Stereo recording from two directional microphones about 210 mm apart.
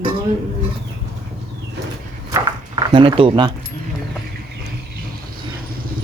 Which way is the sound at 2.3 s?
20° right (ahead or behind).